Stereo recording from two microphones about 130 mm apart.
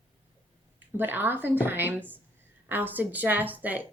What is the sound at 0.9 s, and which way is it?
A woman's voice, 15° right (ahead or behind).